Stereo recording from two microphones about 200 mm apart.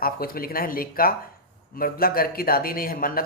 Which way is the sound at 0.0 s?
45° left (ahead or behind).